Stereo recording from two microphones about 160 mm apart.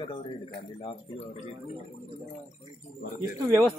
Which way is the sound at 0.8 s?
35° left (ahead or behind).